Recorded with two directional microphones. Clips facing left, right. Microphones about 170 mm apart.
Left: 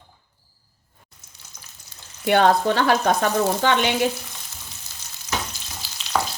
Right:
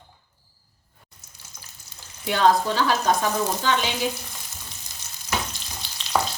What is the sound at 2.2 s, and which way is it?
Frying, 60° left (ahead or behind).